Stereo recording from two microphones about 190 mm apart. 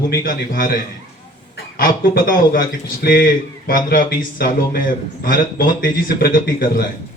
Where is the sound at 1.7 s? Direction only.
50° left (ahead or behind).